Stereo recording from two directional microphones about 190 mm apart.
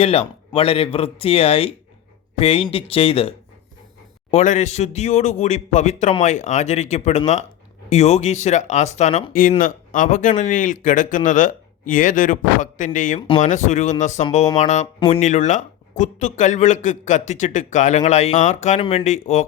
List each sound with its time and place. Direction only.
0.0 s speech: 30° left (ahead or behind)
9.3 s speech: 45° left (ahead or behind)
13.1 s speech: 30° left (ahead or behind)